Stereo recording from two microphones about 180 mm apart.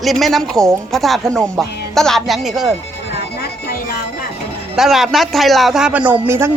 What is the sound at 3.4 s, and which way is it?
Music, 60° left (ahead or behind).